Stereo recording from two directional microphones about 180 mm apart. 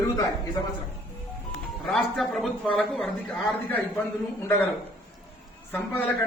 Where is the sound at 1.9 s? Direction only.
Centre (ahead or behind).